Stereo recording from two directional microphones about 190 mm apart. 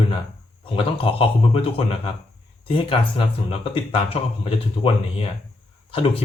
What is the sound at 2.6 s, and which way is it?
Speech, 30° left (ahead or behind).